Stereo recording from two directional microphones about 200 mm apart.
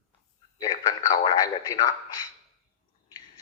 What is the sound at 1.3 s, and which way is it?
Radio, 20° left (ahead or behind).